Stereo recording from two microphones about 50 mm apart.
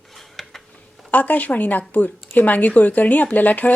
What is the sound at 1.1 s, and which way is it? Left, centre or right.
Speech, left.